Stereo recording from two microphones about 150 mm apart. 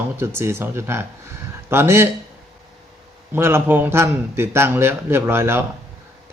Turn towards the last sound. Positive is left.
turn(degrees=-15)  # may be behind; listen again after turning